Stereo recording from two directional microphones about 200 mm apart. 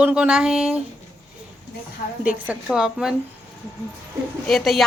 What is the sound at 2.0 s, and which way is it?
Speech, 40° left (ahead or behind).